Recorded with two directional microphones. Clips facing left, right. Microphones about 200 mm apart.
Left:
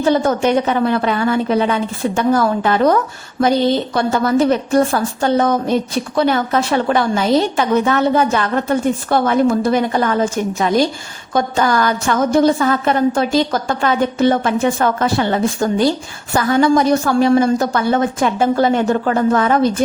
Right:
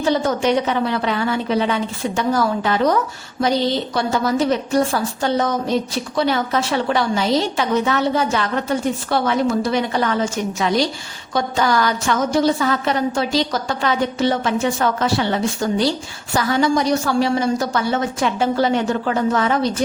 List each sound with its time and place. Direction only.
0.0 s a woman's voice: 55° left (ahead or behind)
3.9 s a woman's voice: 55° left (ahead or behind)